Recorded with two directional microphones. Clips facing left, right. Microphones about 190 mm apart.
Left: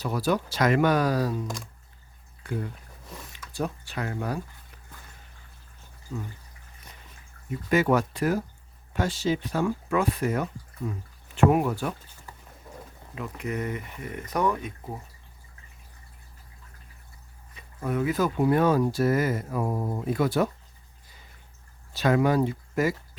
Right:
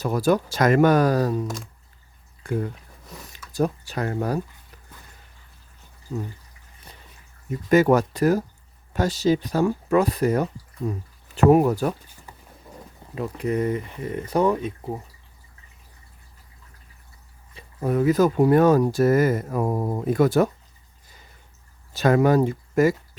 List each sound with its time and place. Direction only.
0.0 s speech: 45° right (ahead or behind)
3.3 s speech: 40° right (ahead or behind)
7.7 s speech: 40° right (ahead or behind)
13.1 s speech: 35° right (ahead or behind)
17.5 s speech: 30° right (ahead or behind); by 20.5 s 45° right (ahead or behind)
21.9 s speech: 45° right (ahead or behind)